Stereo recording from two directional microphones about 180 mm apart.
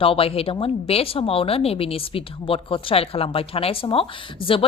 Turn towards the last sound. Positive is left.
turn(degrees=30)  # may be behind; listen again after turning